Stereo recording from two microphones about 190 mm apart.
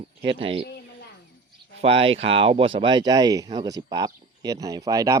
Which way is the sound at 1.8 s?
30° right (ahead or behind).